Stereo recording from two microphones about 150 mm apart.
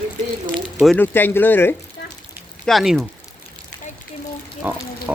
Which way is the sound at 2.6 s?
Centre (ahead or behind).